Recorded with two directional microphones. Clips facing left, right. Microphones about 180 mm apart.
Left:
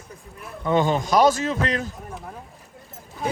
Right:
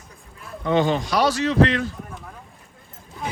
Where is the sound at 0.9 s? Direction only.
45° left (ahead or behind).